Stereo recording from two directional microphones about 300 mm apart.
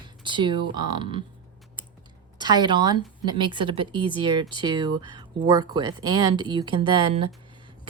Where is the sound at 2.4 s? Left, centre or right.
Centre.